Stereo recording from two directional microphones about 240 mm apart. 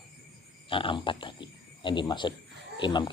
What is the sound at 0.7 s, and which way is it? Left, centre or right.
Speech, left.